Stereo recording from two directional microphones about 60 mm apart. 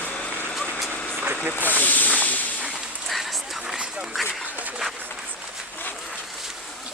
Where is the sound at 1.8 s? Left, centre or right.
Left.